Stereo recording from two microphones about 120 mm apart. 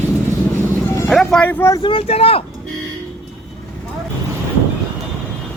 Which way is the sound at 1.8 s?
50° left (ahead or behind).